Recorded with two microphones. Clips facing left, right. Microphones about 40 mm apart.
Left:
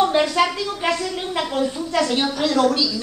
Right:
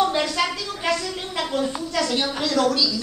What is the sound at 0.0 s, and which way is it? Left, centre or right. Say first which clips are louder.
A woman's voice: left 4 dB; centre.